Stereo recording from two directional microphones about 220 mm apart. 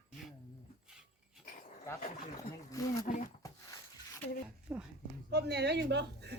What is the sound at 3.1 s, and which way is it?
Speech, 35° left (ahead or behind).